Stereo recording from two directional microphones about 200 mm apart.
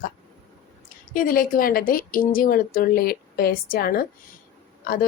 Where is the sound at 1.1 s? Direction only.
45° left (ahead or behind).